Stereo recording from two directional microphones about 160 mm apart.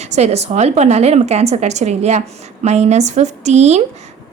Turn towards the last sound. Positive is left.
turn(degrees=-45)  # may be behind; listen again after turning